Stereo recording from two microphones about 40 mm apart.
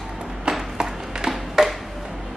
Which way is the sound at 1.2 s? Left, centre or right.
Centre.